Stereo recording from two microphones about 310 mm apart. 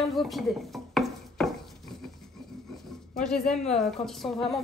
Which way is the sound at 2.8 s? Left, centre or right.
Centre.